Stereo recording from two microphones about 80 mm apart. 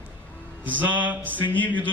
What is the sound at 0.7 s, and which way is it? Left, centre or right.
Speech, right.